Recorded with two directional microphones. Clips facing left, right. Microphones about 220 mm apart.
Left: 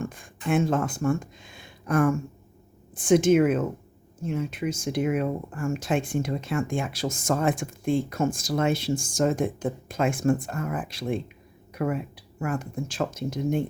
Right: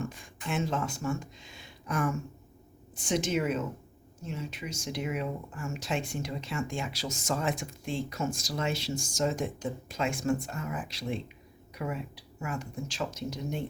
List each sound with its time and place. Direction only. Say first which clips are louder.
0.0 s speech: left 5 dB; 50° left (ahead or behind)